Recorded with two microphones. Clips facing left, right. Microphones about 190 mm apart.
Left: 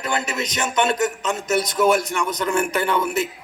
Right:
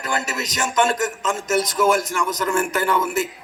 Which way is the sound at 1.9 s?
20° left (ahead or behind).